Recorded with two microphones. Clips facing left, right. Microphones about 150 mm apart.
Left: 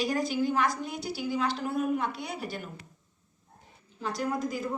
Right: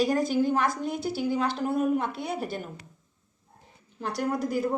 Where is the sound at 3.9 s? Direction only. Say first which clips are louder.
Right 2 dB; 65° right (ahead or behind).